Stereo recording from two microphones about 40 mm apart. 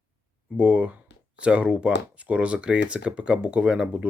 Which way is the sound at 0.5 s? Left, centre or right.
Right.